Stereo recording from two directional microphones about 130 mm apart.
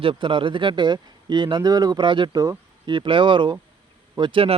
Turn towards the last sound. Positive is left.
turn(degrees=-40)  # may be behind; listen again after turning